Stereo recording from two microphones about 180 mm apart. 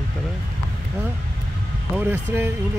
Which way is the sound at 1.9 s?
10° right (ahead or behind).